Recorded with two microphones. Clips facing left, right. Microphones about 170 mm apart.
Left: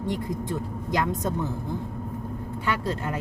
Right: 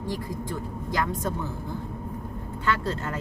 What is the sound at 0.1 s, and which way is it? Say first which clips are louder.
Speech: left 3 dB; 20° left (ahead or behind).